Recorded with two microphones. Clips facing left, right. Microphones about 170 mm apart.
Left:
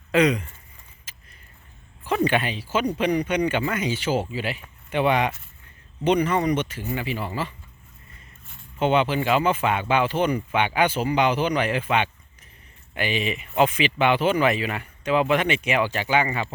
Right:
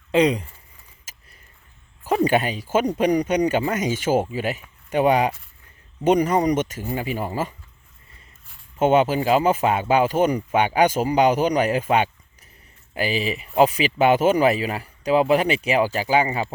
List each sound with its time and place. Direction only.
0.1 s speech: 30° right (ahead or behind)
1.1 s keys jangling: 40° right (ahead or behind)
2.0 s speech: 40° right (ahead or behind)
8.8 s speech: 40° right (ahead or behind)